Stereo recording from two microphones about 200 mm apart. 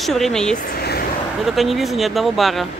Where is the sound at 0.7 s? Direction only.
50° left (ahead or behind).